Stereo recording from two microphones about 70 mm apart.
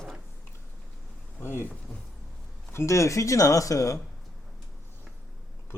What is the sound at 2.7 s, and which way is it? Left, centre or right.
Speech, left.